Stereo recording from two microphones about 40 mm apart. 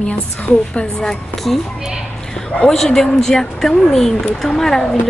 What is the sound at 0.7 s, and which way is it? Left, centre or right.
Speech, left.